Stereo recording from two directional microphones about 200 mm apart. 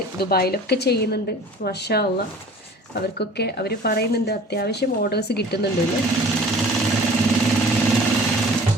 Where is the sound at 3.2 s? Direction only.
55° left (ahead or behind).